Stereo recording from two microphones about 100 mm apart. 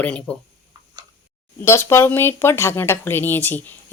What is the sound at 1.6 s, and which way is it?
Speech, 25° left (ahead or behind).